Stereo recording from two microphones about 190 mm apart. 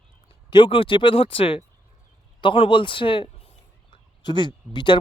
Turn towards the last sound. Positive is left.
turn(degrees=25)  # may be behind; listen again after turning